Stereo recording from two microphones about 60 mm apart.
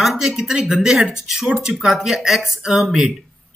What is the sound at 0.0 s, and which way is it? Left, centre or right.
Speech, centre.